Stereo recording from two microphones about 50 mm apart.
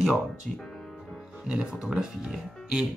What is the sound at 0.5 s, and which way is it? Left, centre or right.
Speech, centre.